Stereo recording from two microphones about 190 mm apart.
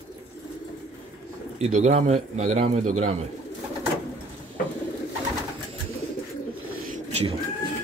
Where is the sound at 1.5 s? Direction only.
35° right (ahead or behind).